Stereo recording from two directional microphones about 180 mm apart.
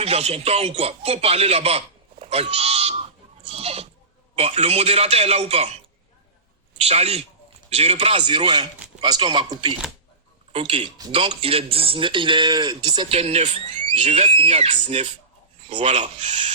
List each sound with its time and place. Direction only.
0.0 s speech: 35° right (ahead or behind)
3.4 s goat: 35° right (ahead or behind)
4.4 s speech: 35° right (ahead or behind)
6.7 s a man's voice: 35° right (ahead or behind)